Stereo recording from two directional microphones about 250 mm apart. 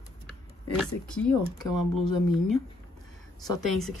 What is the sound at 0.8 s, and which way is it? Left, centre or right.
Speech, centre.